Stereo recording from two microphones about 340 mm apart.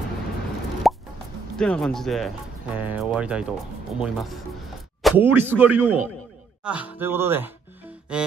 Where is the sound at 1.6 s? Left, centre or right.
Centre.